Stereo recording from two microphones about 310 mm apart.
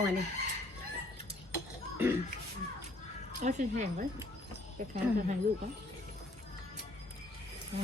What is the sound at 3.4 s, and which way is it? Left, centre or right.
Speech, right.